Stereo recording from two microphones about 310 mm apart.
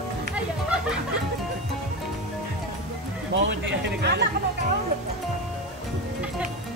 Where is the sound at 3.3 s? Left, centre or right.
Right.